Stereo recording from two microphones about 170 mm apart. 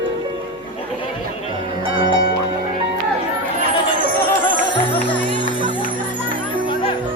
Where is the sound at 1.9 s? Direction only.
30° right (ahead or behind).